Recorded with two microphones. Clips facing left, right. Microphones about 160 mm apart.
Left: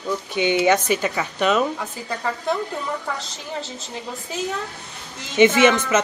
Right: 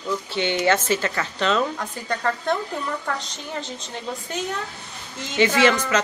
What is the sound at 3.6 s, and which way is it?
Speech, 5° left (ahead or behind).